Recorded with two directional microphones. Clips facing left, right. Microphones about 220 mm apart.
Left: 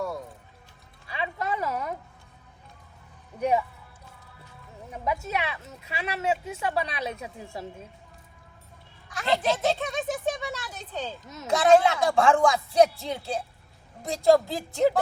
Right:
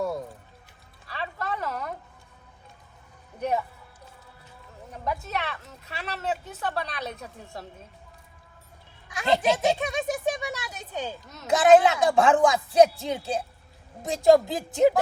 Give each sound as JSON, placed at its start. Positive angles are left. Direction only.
{"t": 1.2, "sound": "a sound", "side_deg": 5}
{"t": 4.9, "sound": "speech", "side_deg": 5}
{"t": 9.1, "sound": "a child's voice", "side_deg": -15}
{"t": 11.2, "sound": "speech", "side_deg": 0}
{"t": 11.5, "sound": "speech", "side_deg": -20}